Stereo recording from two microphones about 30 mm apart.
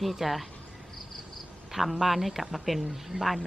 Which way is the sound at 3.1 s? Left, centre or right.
Right.